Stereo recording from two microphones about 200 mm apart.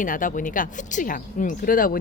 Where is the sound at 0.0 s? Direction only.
40° left (ahead or behind).